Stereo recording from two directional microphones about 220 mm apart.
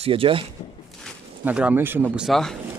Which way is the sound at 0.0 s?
25° right (ahead or behind).